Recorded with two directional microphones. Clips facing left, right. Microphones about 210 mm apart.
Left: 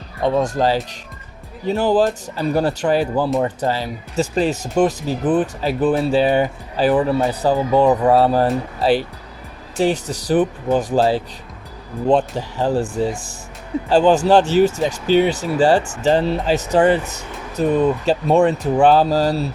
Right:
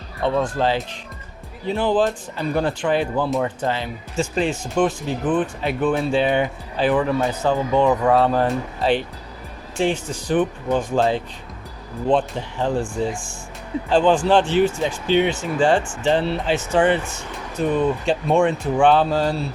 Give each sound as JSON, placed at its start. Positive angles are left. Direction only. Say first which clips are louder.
{"t": 0.2, "sound": "speech", "louder": "left 3 dB", "side_deg": 40}
{"t": 13.9, "sound": "speech", "louder": "left 3 dB", "side_deg": 40}